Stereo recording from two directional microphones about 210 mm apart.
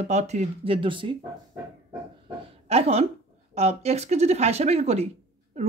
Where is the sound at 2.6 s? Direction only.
30° right (ahead or behind).